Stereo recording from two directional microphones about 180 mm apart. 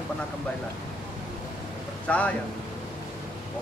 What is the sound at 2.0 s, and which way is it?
Speech, 5° left (ahead or behind).